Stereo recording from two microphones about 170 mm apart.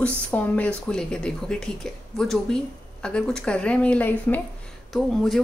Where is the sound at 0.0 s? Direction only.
10° left (ahead or behind).